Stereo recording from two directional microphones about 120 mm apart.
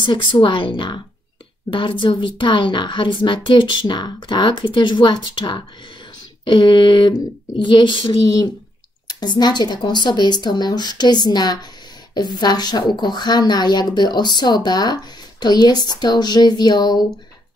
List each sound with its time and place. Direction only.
0.0 s a woman's voice: 40° left (ahead or behind)